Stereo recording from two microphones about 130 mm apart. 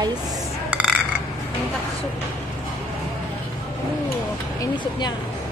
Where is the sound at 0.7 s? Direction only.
10° right (ahead or behind).